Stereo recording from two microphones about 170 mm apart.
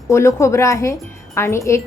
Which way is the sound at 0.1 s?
15° left (ahead or behind).